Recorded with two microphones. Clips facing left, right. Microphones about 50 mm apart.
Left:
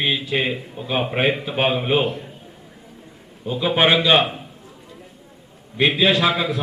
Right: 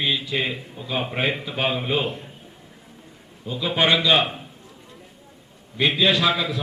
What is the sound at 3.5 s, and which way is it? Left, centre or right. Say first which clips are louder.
Speech: left 3 dB; centre.